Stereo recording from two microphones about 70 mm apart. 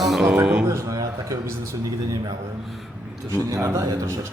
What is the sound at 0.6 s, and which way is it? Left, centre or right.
Speech, right.